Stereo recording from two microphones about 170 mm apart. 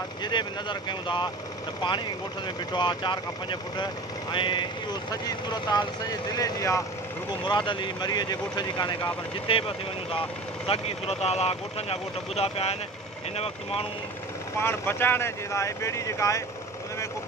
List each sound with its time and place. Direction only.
0.2 s speech: 25° left (ahead or behind)
2.7 s speech: 25° left (ahead or behind)
14.6 s speech: 15° left (ahead or behind)